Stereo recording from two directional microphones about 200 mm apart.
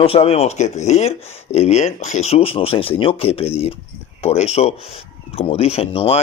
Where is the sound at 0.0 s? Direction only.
30° left (ahead or behind).